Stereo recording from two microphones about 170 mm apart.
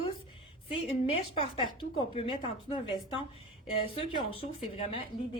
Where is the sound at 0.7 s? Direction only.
30° left (ahead or behind).